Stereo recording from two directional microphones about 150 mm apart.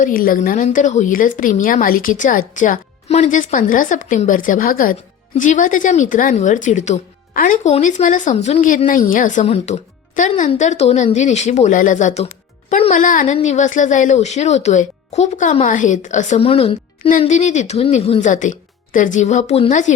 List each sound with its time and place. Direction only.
0.0 s speech: 70° left (ahead or behind)
5.4 s speech: 60° left (ahead or behind)
8.9 s a woman's voice: 65° left (ahead or behind); by 17.1 s 40° left (ahead or behind)
17.1 s a woman's voice: 55° left (ahead or behind)